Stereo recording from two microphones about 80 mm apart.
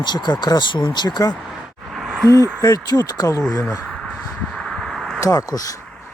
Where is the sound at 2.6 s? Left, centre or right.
Left.